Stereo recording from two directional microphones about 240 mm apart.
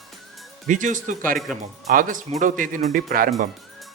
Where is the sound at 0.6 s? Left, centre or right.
Right.